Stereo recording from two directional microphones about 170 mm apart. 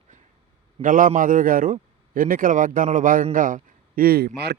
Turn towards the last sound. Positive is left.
turn(degrees=-75)  # may be behind; listen again after turning